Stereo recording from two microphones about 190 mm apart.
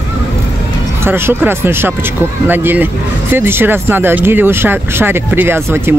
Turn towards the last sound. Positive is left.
turn(degrees=-10)  # may be behind; listen again after turning